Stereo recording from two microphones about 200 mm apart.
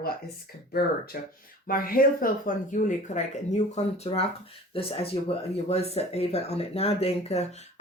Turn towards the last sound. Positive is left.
turn(degrees=30)  # may be behind; listen again after turning